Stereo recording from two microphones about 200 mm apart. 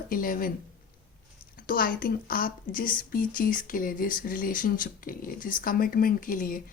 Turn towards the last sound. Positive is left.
turn(degrees=45)  # may be behind; listen again after turning